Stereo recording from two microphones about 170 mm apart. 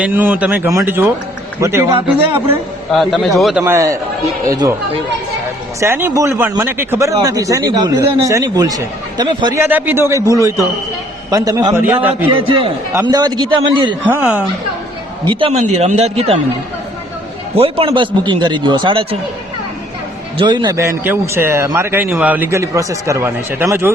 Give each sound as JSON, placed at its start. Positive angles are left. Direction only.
{"t": 0.0, "sound": "a man's voice", "side_deg": -10}
{"t": 2.9, "sound": "a man's voice", "side_deg": 0}
{"t": 3.6, "sound": "a man's voice", "side_deg": -20}
{"t": 5.8, "sound": "speech", "side_deg": -15}
{"t": 9.6, "sound": "a man's voice", "side_deg": -10}
{"t": 12.3, "sound": "a man's voice", "side_deg": -30}
{"t": 12.9, "sound": "speech", "side_deg": -20}
{"t": 14.1, "sound": "a man's voice", "side_deg": -10}
{"t": 15.2, "sound": "a man's voice", "side_deg": -30}
{"t": 15.6, "sound": "a man's voice", "side_deg": -40}
{"t": 17.6, "sound": "speech", "side_deg": -30}
{"t": 20.4, "sound": "a man's voice", "side_deg": -25}